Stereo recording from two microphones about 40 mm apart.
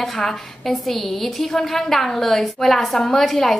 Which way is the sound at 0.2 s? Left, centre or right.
Centre.